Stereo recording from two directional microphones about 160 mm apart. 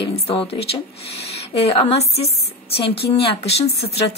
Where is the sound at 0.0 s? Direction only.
35° left (ahead or behind).